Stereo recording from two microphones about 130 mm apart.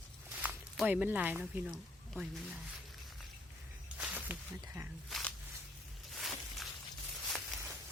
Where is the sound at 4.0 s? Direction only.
10° right (ahead or behind).